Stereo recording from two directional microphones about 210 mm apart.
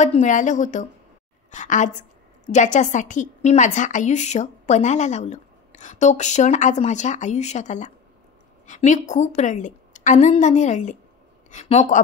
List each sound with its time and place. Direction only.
0.0 s a woman's voice: 35° left (ahead or behind)